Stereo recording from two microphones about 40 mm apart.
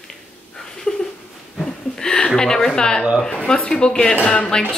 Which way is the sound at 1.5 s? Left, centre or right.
Centre.